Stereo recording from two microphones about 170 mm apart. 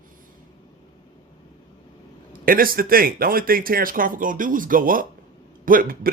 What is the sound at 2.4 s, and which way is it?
A man's voice, 55° right (ahead or behind).